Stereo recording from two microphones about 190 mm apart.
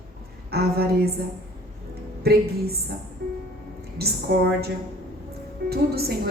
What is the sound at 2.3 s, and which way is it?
Speech, 55° right (ahead or behind).